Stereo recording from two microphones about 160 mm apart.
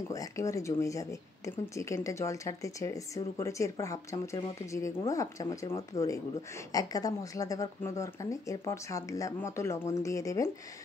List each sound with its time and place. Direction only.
0.1 s speech: 20° left (ahead or behind)